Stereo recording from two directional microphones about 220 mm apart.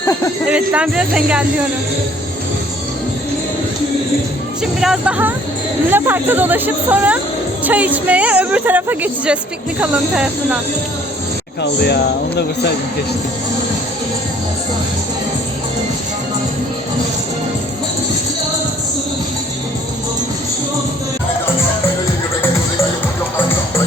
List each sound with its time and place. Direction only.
0.4 s speech: 5° right (ahead or behind)
4.6 s speech: centre (ahead or behind)
11.6 s speech: 50° left (ahead or behind)